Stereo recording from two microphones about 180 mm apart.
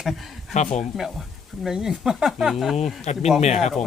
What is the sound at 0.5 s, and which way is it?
Speech, 40° left (ahead or behind).